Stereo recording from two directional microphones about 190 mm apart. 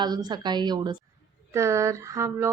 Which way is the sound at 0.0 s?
20° right (ahead or behind).